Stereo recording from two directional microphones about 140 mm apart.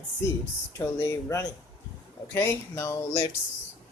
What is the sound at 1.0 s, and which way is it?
Speech, 20° left (ahead or behind).